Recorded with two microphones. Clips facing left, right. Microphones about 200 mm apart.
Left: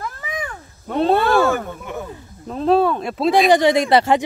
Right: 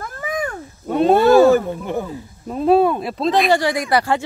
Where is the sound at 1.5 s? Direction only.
35° right (ahead or behind).